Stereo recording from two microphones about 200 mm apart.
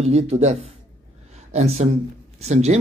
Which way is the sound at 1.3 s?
35° right (ahead or behind).